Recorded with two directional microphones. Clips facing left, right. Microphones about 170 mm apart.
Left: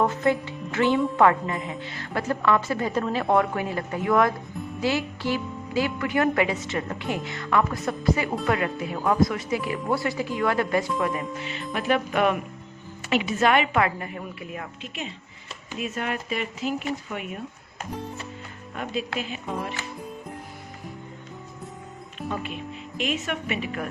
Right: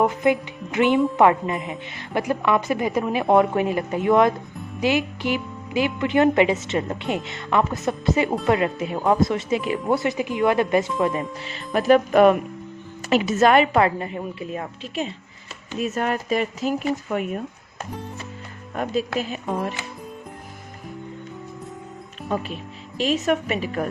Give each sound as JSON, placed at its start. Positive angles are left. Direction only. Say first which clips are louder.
{"t": 0.0, "sound": "music", "louder": "right 3 dB", "side_deg": -15}
{"t": 1.1, "sound": "a woman's voice", "louder": "right 3 dB", "side_deg": -20}
{"t": 15.8, "sound": "speech", "louder": "right 6 dB", "side_deg": -40}
{"t": 18.8, "sound": "speech", "louder": "right 5 dB", "side_deg": -40}
{"t": 22.2, "sound": "music", "louder": "right 4 dB", "side_deg": 0}
{"t": 23.0, "sound": "a woman's voice", "louder": "right 7 dB", "side_deg": -35}